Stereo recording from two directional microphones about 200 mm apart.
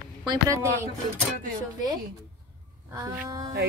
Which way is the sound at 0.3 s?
15° right (ahead or behind).